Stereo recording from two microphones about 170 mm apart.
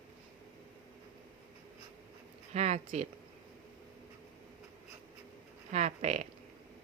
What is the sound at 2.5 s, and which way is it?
Speech, 40° right (ahead or behind).